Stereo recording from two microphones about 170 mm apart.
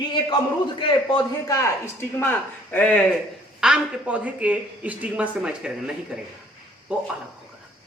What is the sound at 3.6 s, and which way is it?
Speech, 5° right (ahead or behind).